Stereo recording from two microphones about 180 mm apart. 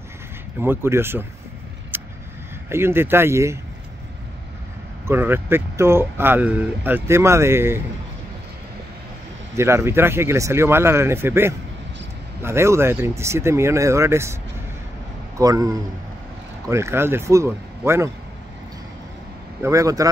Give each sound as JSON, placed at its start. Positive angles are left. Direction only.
{"t": 0.6, "sound": "speech", "side_deg": -15}
{"t": 1.9, "sound": "vehicle", "side_deg": -10}
{"t": 2.7, "sound": "speech", "side_deg": -15}
{"t": 5.0, "sound": "speech", "side_deg": -10}
{"t": 9.6, "sound": "a man's voice", "side_deg": -15}
{"t": 19.6, "sound": "speech", "side_deg": -20}